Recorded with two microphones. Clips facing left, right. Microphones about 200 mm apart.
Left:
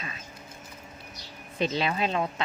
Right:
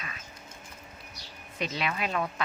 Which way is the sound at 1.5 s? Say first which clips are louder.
Left 5 dB; 30° left (ahead or behind).